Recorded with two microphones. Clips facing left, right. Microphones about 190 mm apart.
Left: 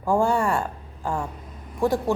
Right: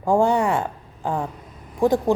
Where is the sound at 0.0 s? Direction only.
15° right (ahead or behind).